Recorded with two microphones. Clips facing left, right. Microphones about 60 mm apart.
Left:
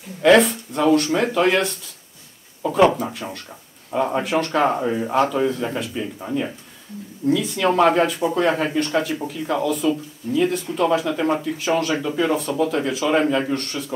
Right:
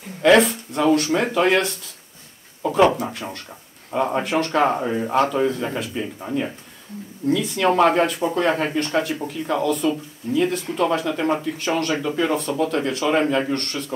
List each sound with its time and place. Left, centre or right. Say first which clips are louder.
0.2 s speech: left 1 dB; centre